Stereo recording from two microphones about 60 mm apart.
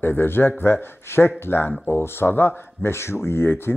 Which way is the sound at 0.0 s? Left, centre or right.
Left.